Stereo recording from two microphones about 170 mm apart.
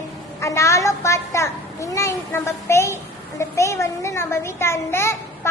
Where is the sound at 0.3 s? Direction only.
15° left (ahead or behind).